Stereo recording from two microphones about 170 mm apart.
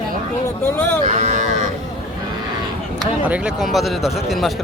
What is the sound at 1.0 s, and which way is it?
Speech, 45° right (ahead or behind).